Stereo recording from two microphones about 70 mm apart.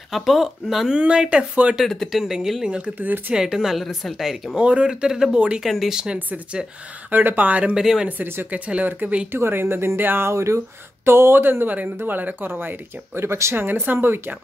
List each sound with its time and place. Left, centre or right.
0.1 s speech: centre
0.9 s speech: centre
1.8 s speech: centre
2.7 s speech: right
3.3 s speech: centre
4.6 s speech: centre
6.1 s speech: right
7.7 s speech: centre
8.2 s speech: right
9.3 s speech: right